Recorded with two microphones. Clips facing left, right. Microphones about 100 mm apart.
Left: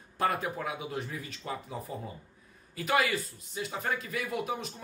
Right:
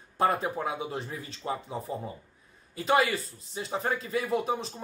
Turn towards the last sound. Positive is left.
turn(degrees=-30)  # may be behind; listen again after turning